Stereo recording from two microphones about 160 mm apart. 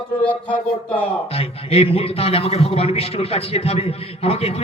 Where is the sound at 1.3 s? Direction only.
40° left (ahead or behind).